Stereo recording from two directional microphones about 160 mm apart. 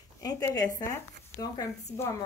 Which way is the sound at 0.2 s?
25° left (ahead or behind).